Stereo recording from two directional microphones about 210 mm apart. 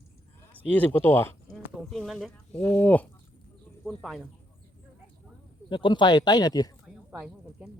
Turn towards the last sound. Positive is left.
turn(degrees=-5)  # may be behind; listen again after turning